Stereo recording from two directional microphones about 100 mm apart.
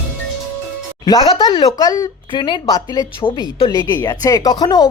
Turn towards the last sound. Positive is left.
turn(degrees=45)  # may be behind; listen again after turning